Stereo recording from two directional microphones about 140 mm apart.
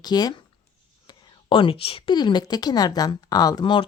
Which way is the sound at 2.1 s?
30° left (ahead or behind).